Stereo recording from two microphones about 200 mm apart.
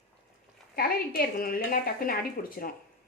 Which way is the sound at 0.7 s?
50° left (ahead or behind).